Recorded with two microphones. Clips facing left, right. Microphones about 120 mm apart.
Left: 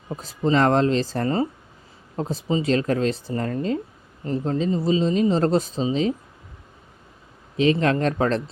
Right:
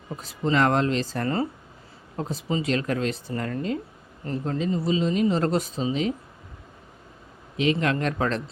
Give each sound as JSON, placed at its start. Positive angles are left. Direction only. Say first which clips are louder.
{"t": 0.4, "sound": "speech", "louder": "left 3 dB", "side_deg": 30}
{"t": 7.5, "sound": "speech", "louder": "left 4 dB", "side_deg": 35}